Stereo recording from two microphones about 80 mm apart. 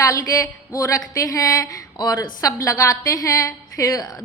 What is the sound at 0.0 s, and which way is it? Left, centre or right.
A woman's voice, left.